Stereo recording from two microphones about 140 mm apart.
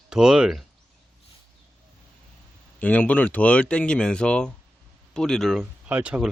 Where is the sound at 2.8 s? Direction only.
10° left (ahead or behind).